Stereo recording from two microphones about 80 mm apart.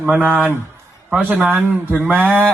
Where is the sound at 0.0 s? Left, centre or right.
Centre.